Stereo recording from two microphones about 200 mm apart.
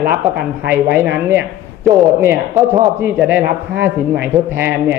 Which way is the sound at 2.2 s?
15° right (ahead or behind).